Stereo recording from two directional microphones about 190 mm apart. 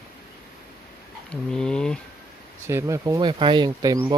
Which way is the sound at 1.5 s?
5° left (ahead or behind).